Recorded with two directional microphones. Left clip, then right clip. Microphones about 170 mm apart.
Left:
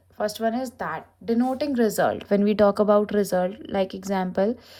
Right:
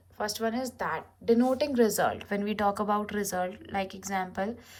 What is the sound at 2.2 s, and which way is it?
Speech, 30° left (ahead or behind).